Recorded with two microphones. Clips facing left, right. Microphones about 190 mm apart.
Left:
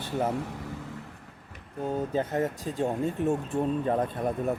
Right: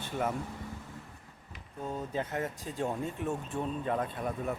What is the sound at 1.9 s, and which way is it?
Speech, 40° left (ahead or behind).